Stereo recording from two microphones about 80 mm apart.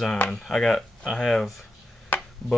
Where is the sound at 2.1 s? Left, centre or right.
Left.